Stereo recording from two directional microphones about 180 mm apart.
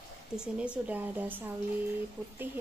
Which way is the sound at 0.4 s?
5° right (ahead or behind).